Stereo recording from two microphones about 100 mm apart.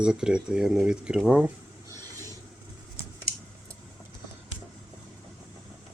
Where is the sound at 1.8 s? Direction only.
35° right (ahead or behind).